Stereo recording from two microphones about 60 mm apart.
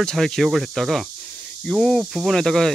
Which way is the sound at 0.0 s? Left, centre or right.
Centre.